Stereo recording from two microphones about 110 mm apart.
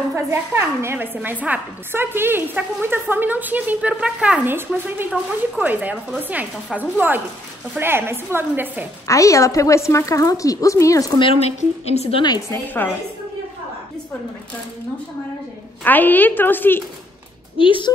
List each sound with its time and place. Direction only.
0.1 s a woman's voice: 20° right (ahead or behind)
9.0 s speech: 30° left (ahead or behind)
11.1 s speech: 50° left (ahead or behind)
11.4 s a woman's voice: 75° left (ahead or behind)
12.4 s a woman's voice: 15° left (ahead or behind)
15.8 s a woman's voice: 15° left (ahead or behind)
17.6 s speech: 50° left (ahead or behind)